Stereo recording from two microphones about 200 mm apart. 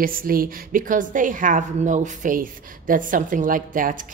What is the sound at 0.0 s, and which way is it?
A woman's voice, 45° right (ahead or behind).